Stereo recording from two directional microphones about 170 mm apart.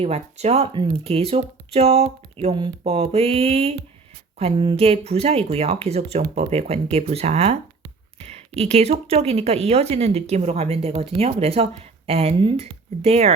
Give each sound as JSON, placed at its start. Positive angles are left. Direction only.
{"t": 0.0, "sound": "speech", "side_deg": -40}